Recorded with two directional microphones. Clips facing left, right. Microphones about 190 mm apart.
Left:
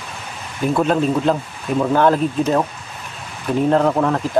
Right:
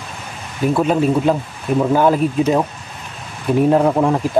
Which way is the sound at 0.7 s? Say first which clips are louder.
Right 1 dB; 5° right (ahead or behind).